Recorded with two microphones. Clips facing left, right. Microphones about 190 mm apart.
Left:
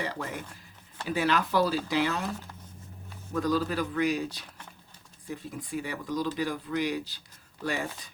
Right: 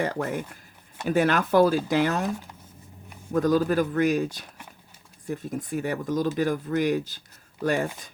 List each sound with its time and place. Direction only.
0.0 s speech: 50° right (ahead or behind)
3.3 s speech: 45° right (ahead or behind)